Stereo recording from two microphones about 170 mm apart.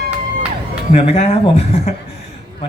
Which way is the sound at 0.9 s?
40° left (ahead or behind).